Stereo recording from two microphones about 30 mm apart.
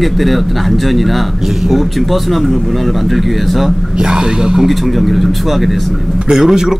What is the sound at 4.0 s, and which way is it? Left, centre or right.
Speech, right.